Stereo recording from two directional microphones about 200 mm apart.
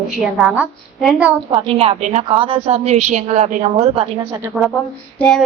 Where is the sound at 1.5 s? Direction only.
25° right (ahead or behind).